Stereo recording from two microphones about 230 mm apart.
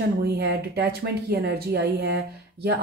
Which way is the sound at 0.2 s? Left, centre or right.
Right.